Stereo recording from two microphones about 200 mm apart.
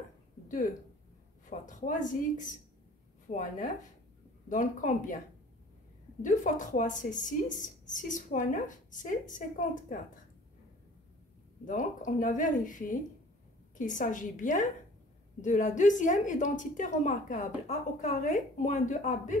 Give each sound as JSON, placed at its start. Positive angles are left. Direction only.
{"t": 1.5, "sound": "a woman's voice", "side_deg": 40}
{"t": 6.2, "sound": "a woman's voice", "side_deg": 40}
{"t": 11.6, "sound": "a woman's voice", "side_deg": 40}